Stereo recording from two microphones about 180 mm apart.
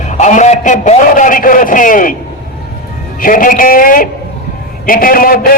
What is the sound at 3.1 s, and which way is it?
A man's voice, 50° left (ahead or behind).